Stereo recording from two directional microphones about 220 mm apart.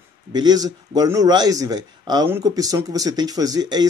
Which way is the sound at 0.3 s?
20° right (ahead or behind).